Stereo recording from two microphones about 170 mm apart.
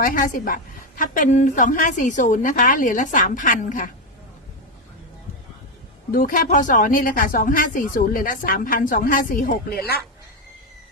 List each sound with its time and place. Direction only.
0.0 s a woman's voice: 55° left (ahead or behind)
6.1 s speech: 55° left (ahead or behind)